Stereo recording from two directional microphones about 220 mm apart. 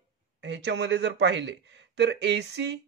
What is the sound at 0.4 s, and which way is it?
Speech, 50° right (ahead or behind).